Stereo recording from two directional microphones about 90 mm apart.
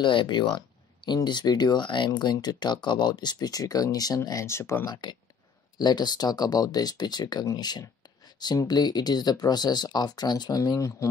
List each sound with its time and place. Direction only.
0.0 s speech: 65° left (ahead or behind); by 4.8 s 30° left (ahead or behind)
4.8 s speech: 50° left (ahead or behind)